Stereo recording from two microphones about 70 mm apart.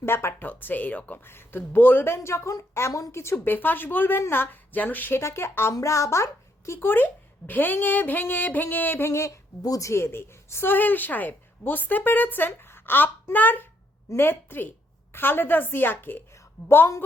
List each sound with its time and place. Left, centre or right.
0.0 s a woman's voice: left
2.1 s a woman's voice: left
3.4 s a woman's voice: left
5.2 s a woman's voice: left
5.7 s speech: left
6.7 s a woman's voice: left
9.0 s speech: left
9.6 s a woman's voice: left
9.9 s a woman's voice: left
16.3 s a sound: left